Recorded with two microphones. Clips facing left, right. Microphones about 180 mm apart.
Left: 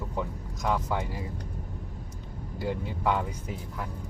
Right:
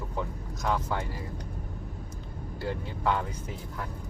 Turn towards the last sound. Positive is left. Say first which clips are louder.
# left 1 dB
turn(degrees=10)  # may be behind; listen again after turning